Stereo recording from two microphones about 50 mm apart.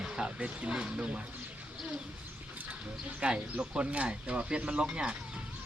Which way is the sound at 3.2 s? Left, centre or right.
Centre.